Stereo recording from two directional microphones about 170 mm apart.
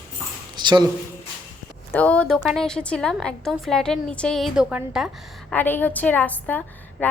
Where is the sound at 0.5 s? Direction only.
25° right (ahead or behind).